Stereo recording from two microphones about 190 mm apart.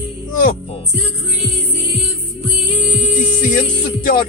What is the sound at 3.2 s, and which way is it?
Music, 45° left (ahead or behind).